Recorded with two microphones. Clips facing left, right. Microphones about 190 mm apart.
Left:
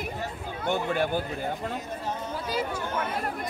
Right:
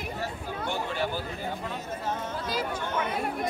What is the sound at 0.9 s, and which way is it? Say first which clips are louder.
Speech: left 5 dB; 55° left (ahead or behind).